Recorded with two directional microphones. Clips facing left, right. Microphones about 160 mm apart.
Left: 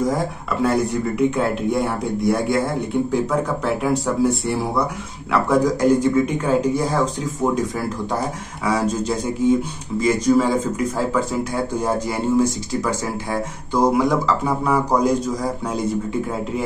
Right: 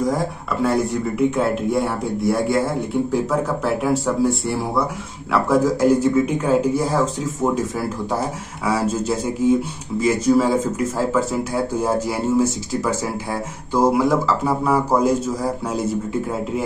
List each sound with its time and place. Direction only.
0.6 s speech: centre (ahead or behind)
3.8 s speech: centre (ahead or behind)
8.6 s speech: 5° right (ahead or behind)